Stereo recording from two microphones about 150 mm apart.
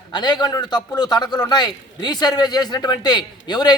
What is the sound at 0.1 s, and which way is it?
A man's voice, 30° left (ahead or behind).